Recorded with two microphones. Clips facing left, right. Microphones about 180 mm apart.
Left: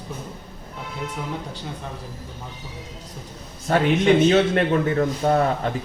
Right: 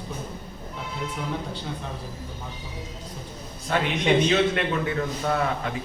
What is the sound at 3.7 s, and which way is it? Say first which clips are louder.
A man's voice: left 5 dB; 45° left (ahead or behind).